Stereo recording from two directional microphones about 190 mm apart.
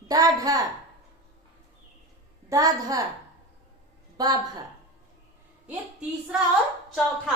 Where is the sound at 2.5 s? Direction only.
20° right (ahead or behind).